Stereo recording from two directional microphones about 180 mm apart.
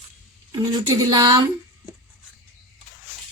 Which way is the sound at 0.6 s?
25° right (ahead or behind).